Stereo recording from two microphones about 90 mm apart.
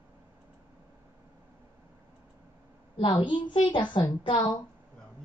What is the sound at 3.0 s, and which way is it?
A child's voice, 75° left (ahead or behind).